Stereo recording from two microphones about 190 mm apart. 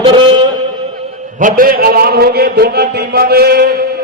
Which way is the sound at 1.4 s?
45° right (ahead or behind).